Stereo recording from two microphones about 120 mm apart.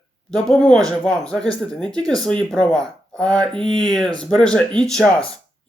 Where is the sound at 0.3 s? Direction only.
5° left (ahead or behind).